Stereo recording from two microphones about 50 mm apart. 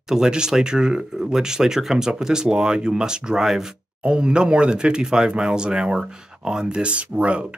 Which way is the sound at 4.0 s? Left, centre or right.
Right.